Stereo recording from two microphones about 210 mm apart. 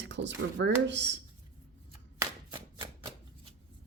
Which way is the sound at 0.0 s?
60° right (ahead or behind).